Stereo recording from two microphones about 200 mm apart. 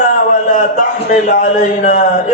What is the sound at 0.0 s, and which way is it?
A man's voice, 40° left (ahead or behind).